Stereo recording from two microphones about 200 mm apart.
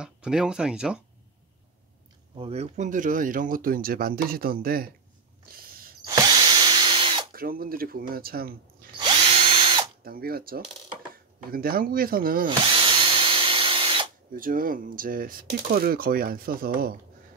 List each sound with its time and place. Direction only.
0.0 s speech: 5° right (ahead or behind)
2.3 s speech: 30° right (ahead or behind); by 4.8 s 45° right (ahead or behind)
5.5 s a sound: 45° right (ahead or behind)
6.0 s drill: 20° right (ahead or behind)
7.3 s speech: 45° right (ahead or behind)
8.9 s drill: 25° right (ahead or behind)
10.0 s speech: 45° right (ahead or behind)
12.4 s drill: 25° right (ahead or behind)
14.3 s speech: 45° right (ahead or behind)